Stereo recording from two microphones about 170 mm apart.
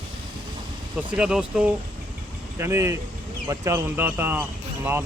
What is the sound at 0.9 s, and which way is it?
Speech, 5° right (ahead or behind).